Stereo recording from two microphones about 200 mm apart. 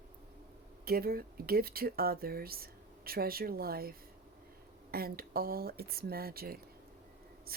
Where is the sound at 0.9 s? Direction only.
50° right (ahead or behind).